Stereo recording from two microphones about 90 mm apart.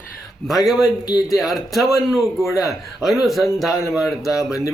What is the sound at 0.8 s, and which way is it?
Speech, 45° left (ahead or behind).